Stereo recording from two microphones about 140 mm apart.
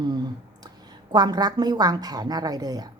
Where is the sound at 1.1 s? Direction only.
30° right (ahead or behind).